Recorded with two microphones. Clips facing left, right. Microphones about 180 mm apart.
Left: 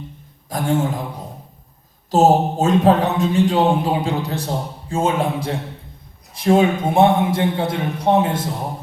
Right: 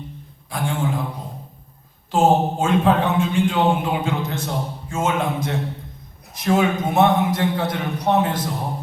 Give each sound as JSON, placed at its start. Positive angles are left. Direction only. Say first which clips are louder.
{"t": 0.5, "sound": "a man's voice", "louder": "left 4 dB", "side_deg": 40}
{"t": 2.0, "sound": "a man's voice", "louder": "left 3 dB", "side_deg": 40}